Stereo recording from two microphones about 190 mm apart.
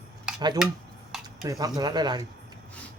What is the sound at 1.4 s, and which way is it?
Speech, 20° right (ahead or behind).